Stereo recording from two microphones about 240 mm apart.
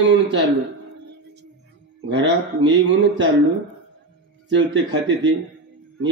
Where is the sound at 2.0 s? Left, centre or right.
Right.